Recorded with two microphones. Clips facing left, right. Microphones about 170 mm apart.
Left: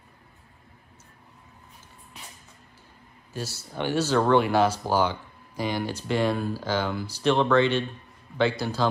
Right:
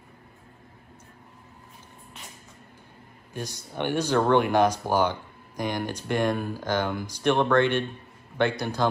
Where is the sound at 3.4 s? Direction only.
15° right (ahead or behind).